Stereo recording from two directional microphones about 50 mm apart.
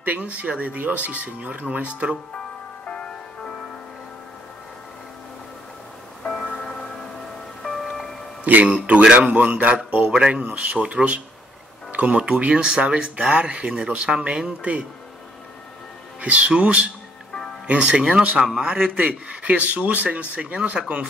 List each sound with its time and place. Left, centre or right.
0.0 s speech: right
2.3 s music: centre
6.2 s music: centre
7.6 s music: centre
8.5 s speech: right
16.2 s speech: right
18.4 s a man's voice: centre
18.9 s speech: right